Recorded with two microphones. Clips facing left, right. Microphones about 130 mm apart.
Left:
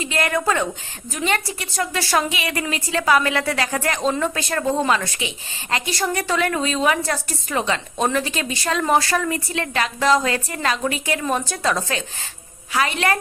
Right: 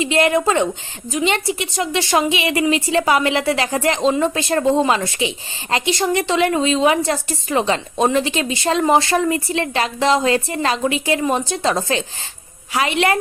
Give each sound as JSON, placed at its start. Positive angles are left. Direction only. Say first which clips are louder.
{"t": 0.0, "sound": "a woman's voice", "louder": "right 6 dB", "side_deg": -25}